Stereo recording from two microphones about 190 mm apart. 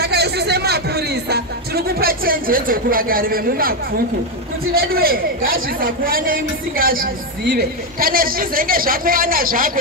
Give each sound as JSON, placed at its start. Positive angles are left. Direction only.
{"t": 0.0, "sound": "music", "side_deg": -55}
{"t": 4.7, "sound": "a man's voice", "side_deg": -50}